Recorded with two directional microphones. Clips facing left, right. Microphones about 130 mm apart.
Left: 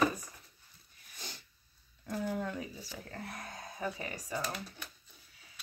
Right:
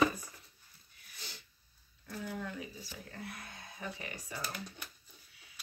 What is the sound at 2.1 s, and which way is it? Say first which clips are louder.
Speech: left 5 dB; 40° left (ahead or behind).